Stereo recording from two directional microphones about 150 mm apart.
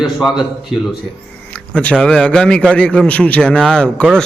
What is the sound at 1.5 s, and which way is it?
A man's voice, 10° left (ahead or behind).